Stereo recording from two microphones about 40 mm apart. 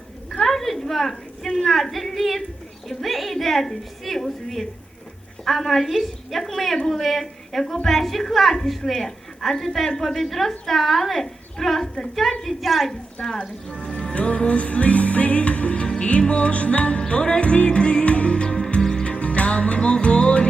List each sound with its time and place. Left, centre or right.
0.3 s a sound: centre
1.5 s a woman's voice: centre
12.6 s a woman's voice: centre
13.2 s a woman's voice: centre
14.1 s music: left
19.0 s music: left